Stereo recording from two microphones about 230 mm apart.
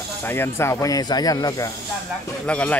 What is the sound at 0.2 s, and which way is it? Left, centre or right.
Speech, centre.